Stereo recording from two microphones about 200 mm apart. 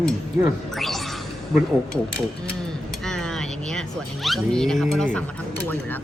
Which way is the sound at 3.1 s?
Centre (ahead or behind).